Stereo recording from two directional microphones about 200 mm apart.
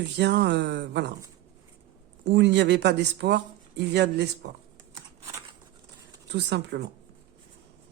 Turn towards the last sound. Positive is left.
turn(degrees=-60)  # may be behind; listen again after turning